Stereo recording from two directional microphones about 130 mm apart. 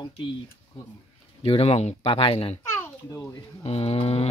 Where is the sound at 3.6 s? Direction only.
50° left (ahead or behind).